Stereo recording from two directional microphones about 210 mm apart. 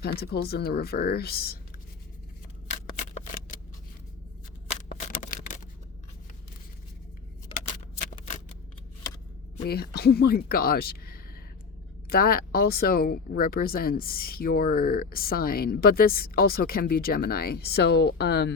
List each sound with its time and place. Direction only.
0.0 s speech: 50° left (ahead or behind)
3.2 s shuffling cards: 40° left (ahead or behind)
8.0 s shuffling cards: 35° left (ahead or behind)
9.6 s speech: 50° left (ahead or behind)